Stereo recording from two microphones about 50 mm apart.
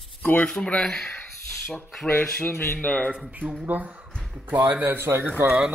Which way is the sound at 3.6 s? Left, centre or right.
Right.